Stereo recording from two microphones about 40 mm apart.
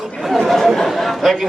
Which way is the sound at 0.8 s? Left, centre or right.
Centre.